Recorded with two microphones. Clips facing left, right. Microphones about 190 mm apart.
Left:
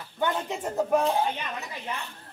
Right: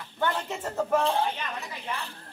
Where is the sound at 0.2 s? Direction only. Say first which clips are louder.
Left 1 dB; 15° left (ahead or behind).